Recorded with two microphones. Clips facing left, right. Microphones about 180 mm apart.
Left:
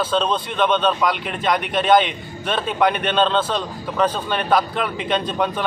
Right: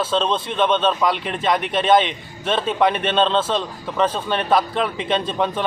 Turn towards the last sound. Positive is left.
turn(degrees=0)  # may be behind; listen again after turning